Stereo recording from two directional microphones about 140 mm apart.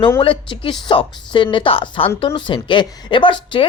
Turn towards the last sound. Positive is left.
turn(degrees=35)  # may be behind; listen again after turning